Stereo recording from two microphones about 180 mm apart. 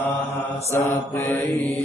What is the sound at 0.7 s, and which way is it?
Mantra, 15° left (ahead or behind).